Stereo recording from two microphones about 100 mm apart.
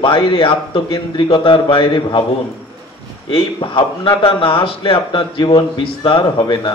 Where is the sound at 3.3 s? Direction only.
65° left (ahead or behind).